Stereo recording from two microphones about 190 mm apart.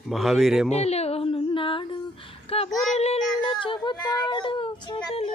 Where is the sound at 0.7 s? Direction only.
35° left (ahead or behind).